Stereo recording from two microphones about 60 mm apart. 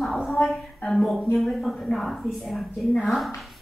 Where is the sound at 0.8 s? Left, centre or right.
Centre.